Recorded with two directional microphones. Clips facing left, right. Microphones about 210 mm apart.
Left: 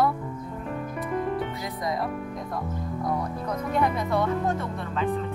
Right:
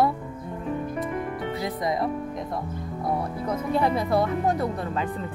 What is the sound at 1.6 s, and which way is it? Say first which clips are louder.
Speech: right 3 dB; 25° right (ahead or behind).